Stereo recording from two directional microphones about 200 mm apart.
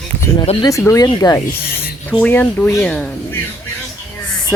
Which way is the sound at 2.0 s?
5° left (ahead or behind).